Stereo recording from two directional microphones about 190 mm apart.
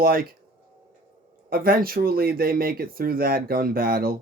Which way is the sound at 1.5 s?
50° right (ahead or behind).